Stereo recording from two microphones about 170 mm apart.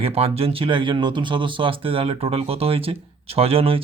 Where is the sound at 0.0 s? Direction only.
35° right (ahead or behind).